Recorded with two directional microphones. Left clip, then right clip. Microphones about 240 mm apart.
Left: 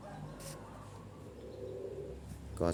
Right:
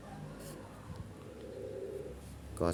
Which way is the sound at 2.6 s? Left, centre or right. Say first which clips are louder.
Even; centre.